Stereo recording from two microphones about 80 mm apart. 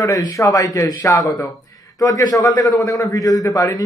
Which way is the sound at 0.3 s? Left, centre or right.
Left.